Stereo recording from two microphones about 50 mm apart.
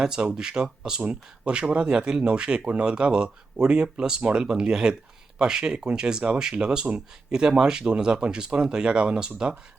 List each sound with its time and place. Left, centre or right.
0.0 s speech: centre